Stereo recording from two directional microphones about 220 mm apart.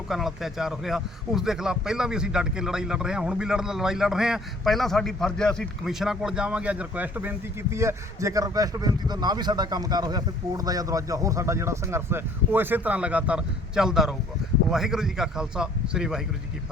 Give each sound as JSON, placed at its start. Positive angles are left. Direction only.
{"t": 0.1, "sound": "a man's voice", "side_deg": 0}